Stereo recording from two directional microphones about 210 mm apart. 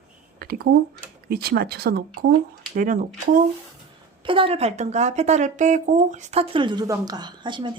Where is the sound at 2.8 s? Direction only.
40° right (ahead or behind).